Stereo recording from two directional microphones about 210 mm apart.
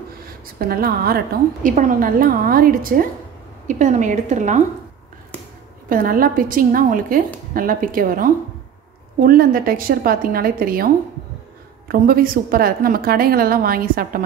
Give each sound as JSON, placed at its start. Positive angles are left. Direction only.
{"t": 0.6, "sound": "a woman's voice", "side_deg": -45}
{"t": 5.9, "sound": "a woman's voice", "side_deg": -45}
{"t": 11.9, "sound": "a woman's voice", "side_deg": -45}